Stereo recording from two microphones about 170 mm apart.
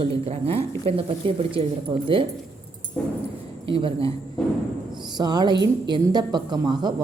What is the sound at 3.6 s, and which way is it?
Speech, 30° right (ahead or behind).